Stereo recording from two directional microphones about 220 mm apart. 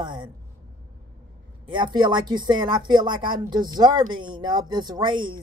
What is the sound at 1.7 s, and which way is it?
A woman's voice, 20° right (ahead or behind).